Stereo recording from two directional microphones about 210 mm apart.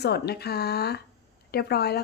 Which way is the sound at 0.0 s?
50° left (ahead or behind).